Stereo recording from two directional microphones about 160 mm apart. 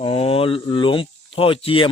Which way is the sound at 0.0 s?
35° left (ahead or behind).